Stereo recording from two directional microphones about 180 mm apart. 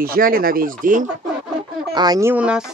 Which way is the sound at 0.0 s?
55° right (ahead or behind).